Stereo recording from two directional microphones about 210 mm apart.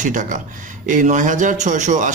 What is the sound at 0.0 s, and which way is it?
A man's voice, 40° right (ahead or behind).